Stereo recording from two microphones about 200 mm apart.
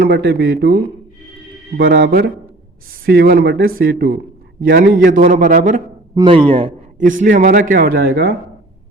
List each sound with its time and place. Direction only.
0.0 s a man's voice: 55° right (ahead or behind)
6.1 s a man's voice: 25° right (ahead or behind)
7.2 s speech: 40° right (ahead or behind)